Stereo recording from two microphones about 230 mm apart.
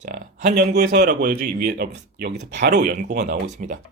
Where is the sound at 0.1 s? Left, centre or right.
Right.